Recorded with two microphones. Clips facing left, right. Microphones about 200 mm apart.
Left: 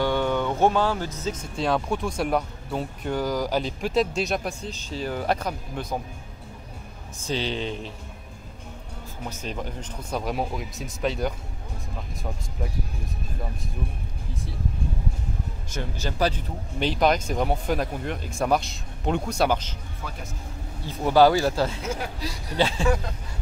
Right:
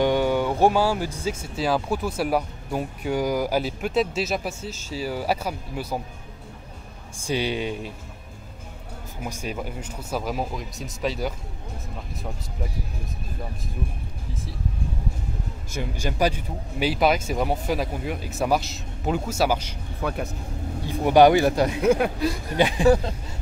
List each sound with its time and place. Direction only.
0.0 s speech: 10° right (ahead or behind)
7.2 s speech: 10° right (ahead or behind)
9.2 s speech: 10° right (ahead or behind)
15.7 s speech: 10° right (ahead or behind)
20.0 s speech: 60° right (ahead or behind)
20.8 s speech: 15° right (ahead or behind)
21.8 s speech: 60° right (ahead or behind)
22.6 s speech: 15° right (ahead or behind)